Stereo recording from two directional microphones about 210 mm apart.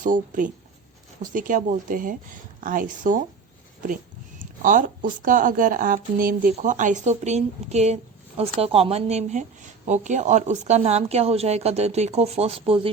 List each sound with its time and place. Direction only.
0.0 s speech: 40° right (ahead or behind)
4.6 s speech: 40° right (ahead or behind)